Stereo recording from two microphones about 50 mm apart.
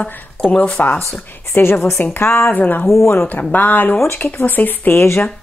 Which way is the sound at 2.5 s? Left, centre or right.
Left.